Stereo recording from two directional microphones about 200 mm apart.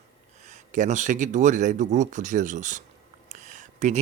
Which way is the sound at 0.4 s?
40° right (ahead or behind).